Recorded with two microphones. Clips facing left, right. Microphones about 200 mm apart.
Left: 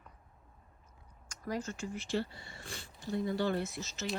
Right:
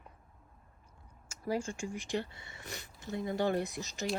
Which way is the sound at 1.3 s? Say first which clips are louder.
Right 3 dB; 10° right (ahead or behind).